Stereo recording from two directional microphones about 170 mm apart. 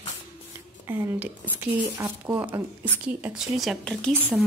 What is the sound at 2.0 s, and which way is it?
Speech, 15° right (ahead or behind).